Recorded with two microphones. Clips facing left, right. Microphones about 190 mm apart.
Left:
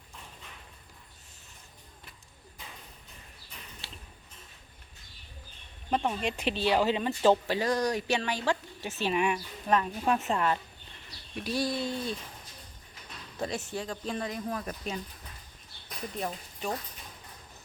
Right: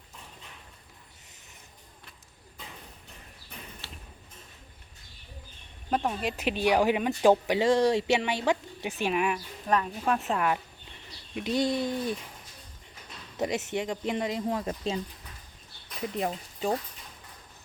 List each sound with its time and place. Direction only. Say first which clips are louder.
3.8 s a sound: right 1 dB; 15° left (ahead or behind)
5.9 s speech: right 1 dB; 5° right (ahead or behind)
11.3 s speech: right 4 dB; 20° right (ahead or behind)
13.3 s speech: right 5 dB; 20° right (ahead or behind)
16.2 s speech: right 4 dB; 25° right (ahead or behind)